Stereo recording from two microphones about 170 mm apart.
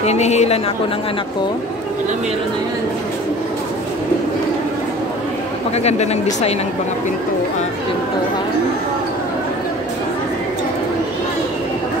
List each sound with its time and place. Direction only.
0.0 s speech: 40° left (ahead or behind)
5.8 s speech: 40° left (ahead or behind)